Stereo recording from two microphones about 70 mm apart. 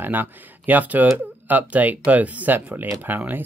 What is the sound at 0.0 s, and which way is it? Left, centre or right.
Speech, right.